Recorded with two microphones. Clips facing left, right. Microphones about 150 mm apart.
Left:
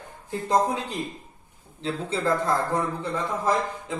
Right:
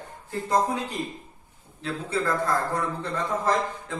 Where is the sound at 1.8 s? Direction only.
25° left (ahead or behind).